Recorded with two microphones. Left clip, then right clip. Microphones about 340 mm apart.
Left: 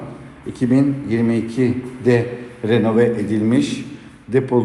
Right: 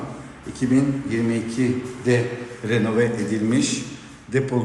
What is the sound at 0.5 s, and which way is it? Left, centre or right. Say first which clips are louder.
A man's voice: left 4 dB; centre.